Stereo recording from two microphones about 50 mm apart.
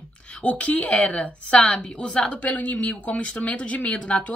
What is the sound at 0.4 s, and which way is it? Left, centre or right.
A woman's voice, left.